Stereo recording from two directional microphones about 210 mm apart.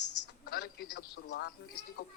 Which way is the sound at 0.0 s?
90° left.